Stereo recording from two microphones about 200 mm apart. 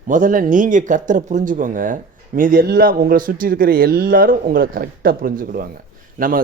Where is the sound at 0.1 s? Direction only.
45° right (ahead or behind).